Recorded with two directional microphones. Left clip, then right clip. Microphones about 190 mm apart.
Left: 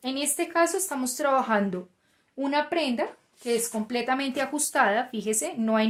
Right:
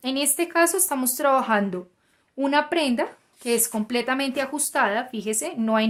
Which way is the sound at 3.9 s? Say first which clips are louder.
Right 2 dB; 25° right (ahead or behind).